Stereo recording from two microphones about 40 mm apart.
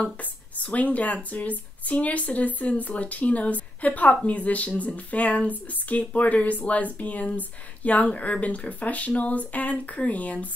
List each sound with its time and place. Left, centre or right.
0.2 s speech: left